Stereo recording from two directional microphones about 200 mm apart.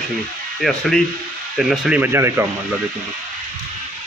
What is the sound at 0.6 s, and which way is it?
Speech, centre (ahead or behind).